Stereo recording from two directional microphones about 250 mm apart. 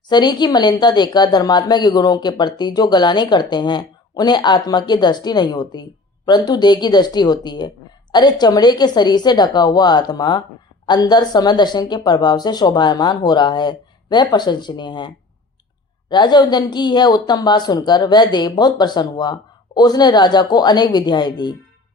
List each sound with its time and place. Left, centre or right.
0.1 s speech: centre